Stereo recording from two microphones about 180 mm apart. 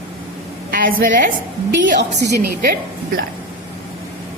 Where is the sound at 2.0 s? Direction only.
70° right (ahead or behind).